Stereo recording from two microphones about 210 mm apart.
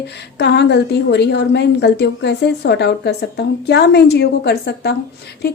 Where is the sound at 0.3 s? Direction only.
55° left (ahead or behind).